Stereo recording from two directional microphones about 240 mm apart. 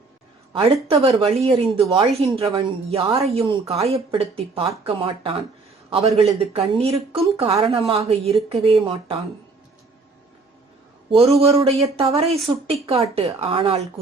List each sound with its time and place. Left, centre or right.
0.5 s a woman's voice: right
5.9 s a woman's voice: right
11.1 s a woman's voice: right